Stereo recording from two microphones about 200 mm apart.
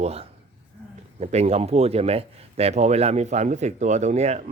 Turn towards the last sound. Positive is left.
turn(degrees=-35)  # may be behind; listen again after turning